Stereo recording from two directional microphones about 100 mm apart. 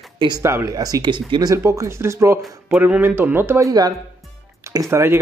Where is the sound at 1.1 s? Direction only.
55° right (ahead or behind).